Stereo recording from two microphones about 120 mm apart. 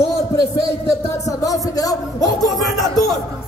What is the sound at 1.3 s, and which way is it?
Music, 30° left (ahead or behind).